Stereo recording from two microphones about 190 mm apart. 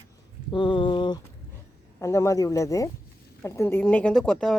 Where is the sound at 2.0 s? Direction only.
15° left (ahead or behind).